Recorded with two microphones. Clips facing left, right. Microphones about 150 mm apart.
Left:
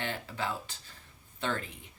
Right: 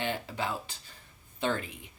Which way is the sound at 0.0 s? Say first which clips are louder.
Right 2 dB; 15° right (ahead or behind).